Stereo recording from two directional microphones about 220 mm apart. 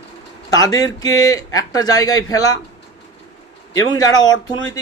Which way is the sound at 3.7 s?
15° left (ahead or behind).